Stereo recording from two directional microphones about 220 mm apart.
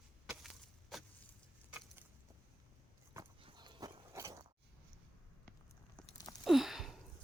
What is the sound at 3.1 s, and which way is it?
Horse, 20° right (ahead or behind).